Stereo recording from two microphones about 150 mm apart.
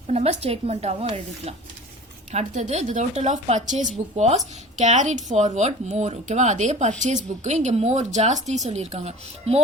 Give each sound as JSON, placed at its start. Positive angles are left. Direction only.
{"t": 0.1, "sound": "a woman's voice", "side_deg": -45}